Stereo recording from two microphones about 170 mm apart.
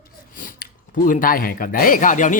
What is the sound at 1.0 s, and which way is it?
Speech, 50° left (ahead or behind).